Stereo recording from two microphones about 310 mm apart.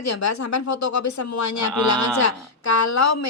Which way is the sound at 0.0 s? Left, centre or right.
Left.